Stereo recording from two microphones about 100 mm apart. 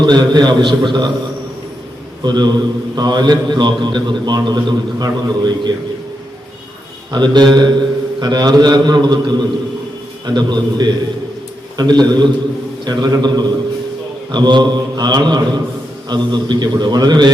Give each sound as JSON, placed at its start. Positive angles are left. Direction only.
{"t": 0.0, "sound": "a man's voice", "side_deg": -45}
{"t": 2.2, "sound": "a man's voice", "side_deg": -45}
{"t": 7.1, "sound": "a man's voice", "side_deg": -45}